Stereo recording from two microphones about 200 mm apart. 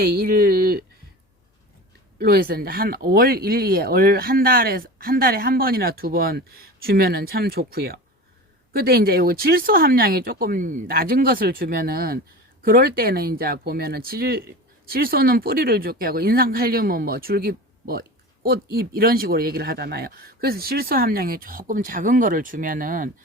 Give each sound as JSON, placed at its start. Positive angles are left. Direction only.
{"t": 0.0, "sound": "speech", "side_deg": -50}
{"t": 2.1, "sound": "speech", "side_deg": -50}